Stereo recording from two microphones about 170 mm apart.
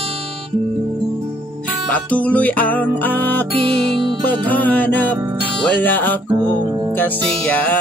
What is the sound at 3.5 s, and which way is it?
Music, 30° right (ahead or behind).